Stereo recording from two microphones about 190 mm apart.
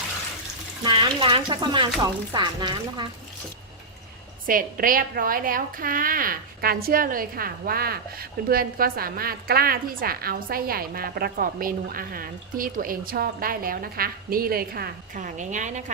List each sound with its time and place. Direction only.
0.9 s speech: 25° right (ahead or behind)
4.4 s a woman's voice: 45° right (ahead or behind)